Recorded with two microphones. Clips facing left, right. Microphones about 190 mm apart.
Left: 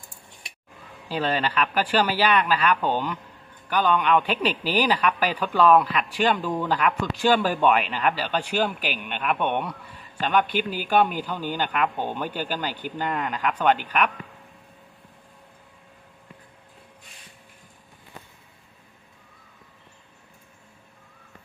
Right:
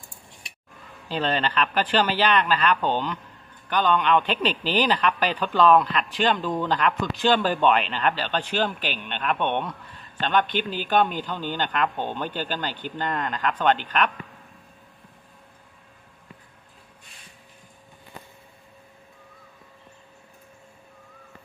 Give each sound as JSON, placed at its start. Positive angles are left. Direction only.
{"t": 1.0, "sound": "speech", "side_deg": 10}